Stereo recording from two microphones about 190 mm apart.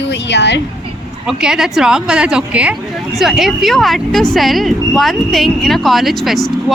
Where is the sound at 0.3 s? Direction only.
65° left (ahead or behind).